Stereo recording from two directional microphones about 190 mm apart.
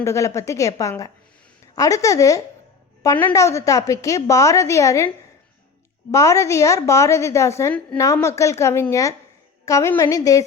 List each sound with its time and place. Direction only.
0.0 s a woman's voice: 15° left (ahead or behind)